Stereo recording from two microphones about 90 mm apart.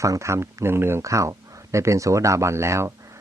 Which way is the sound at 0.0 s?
35° right (ahead or behind).